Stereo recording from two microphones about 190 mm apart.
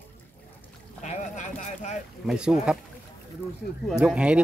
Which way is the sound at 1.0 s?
35° left (ahead or behind).